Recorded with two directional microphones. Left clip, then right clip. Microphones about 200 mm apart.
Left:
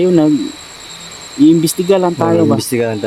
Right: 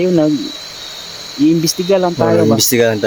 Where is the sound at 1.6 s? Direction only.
15° left (ahead or behind).